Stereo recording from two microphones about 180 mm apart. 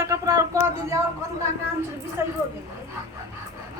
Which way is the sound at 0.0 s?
20° right (ahead or behind).